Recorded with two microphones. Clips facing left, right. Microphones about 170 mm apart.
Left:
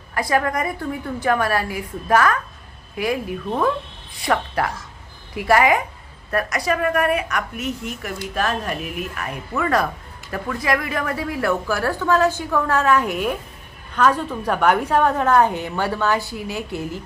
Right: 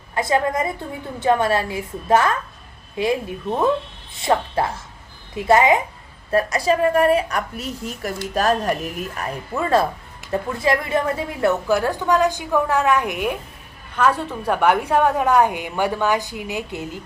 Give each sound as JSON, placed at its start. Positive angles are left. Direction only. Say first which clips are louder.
{"t": 0.1, "sound": "a woman's voice", "louder": "right 1 dB", "side_deg": -25}